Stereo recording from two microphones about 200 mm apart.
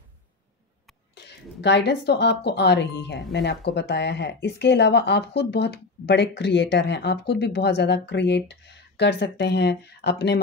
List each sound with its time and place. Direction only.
1.1 s speech: 55° left (ahead or behind)